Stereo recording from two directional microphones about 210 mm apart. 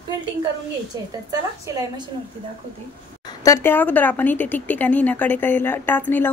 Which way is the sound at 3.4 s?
10° left (ahead or behind).